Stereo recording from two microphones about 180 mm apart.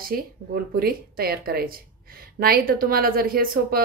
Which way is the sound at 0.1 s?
55° right (ahead or behind).